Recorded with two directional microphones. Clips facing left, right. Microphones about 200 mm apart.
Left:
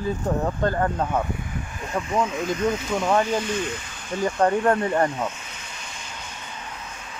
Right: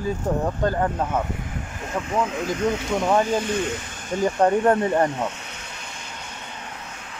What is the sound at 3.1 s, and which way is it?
Speech, 10° right (ahead or behind).